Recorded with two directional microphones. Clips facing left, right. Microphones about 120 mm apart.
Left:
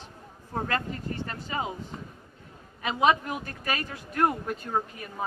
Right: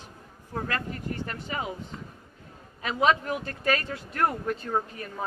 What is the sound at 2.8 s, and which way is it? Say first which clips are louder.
Speech: even; 15° left (ahead or behind).